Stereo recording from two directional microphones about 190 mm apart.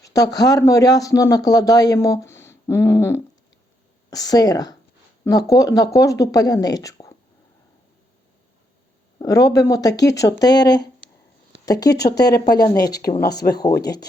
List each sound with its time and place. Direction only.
0.0 s speech: 20° left (ahead or behind)
9.1 s speech: 20° left (ahead or behind)
11.9 s speech: 60° left (ahead or behind)
13.6 s speech: 20° left (ahead or behind)